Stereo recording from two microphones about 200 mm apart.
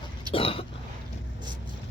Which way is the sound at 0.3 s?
25° left (ahead or behind).